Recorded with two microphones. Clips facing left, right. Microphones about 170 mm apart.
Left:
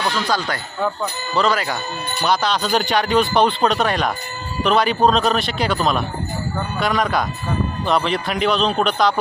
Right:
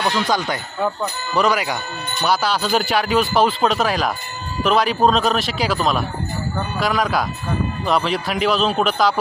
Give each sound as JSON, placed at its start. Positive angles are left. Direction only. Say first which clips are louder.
{"t": 0.1, "sound": "speech", "louder": "right 1 dB", "side_deg": -20}